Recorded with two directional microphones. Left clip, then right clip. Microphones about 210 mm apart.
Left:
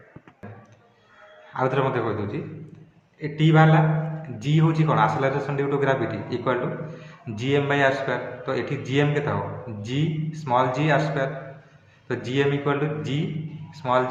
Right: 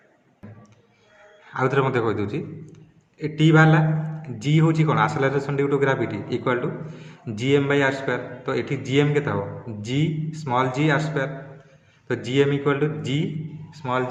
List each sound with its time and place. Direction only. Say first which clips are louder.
1.5 s a man's voice: right 1 dB; 25° right (ahead or behind)